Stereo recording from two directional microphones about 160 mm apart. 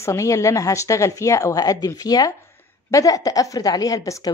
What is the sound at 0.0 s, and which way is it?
Speech, 20° left (ahead or behind).